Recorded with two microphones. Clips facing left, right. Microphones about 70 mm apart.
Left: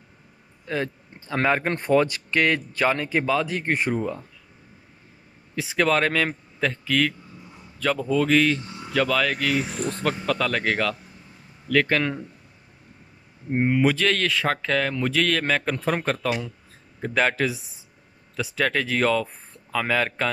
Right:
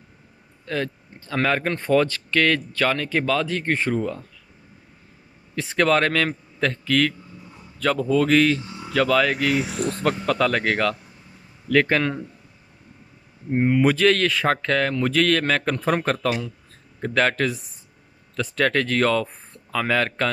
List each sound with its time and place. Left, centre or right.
0.7 s speech: centre
5.6 s speech: centre
13.5 s speech: centre